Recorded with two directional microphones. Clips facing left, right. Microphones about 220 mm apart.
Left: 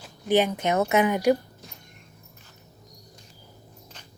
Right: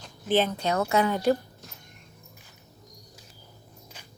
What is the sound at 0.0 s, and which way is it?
A woman's voice, 15° left (ahead or behind).